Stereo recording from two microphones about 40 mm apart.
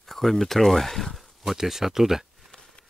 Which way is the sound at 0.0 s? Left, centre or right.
Centre.